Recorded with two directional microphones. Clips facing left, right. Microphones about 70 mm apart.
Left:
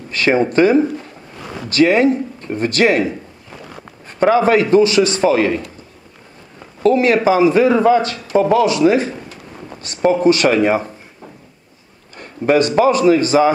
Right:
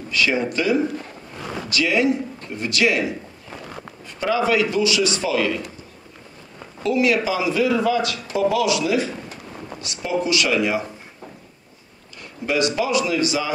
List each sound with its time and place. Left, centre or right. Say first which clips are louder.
0.1 s a man's voice: left 7 dB; left
6.8 s a man's voice: left 6 dB; left
12.2 s a man's voice: left 8 dB; left